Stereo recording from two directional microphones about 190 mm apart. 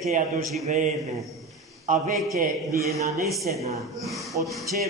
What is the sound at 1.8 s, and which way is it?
Speech, 45° right (ahead or behind).